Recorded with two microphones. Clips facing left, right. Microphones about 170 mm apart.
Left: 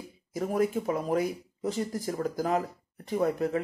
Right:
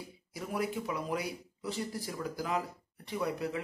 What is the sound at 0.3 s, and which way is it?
Speech, 45° left (ahead or behind).